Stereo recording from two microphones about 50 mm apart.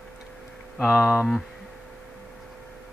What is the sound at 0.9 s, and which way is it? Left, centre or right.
Speech, centre.